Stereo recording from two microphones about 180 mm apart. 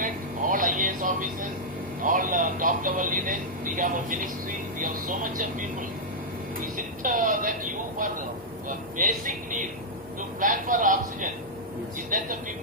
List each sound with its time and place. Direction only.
0.0 s a sound: 50° right (ahead or behind)
2.0 s speech: 50° right (ahead or behind)
6.7 s speech: 50° right (ahead or behind)